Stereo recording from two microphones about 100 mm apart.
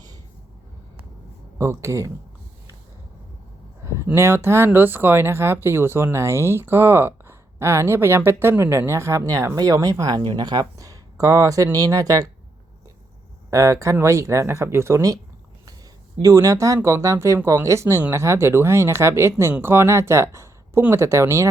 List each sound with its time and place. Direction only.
1.5 s speech: 30° right (ahead or behind)
3.8 s speech: 25° right (ahead or behind)
13.5 s speech: 30° right (ahead or behind)
16.2 s speech: 35° right (ahead or behind)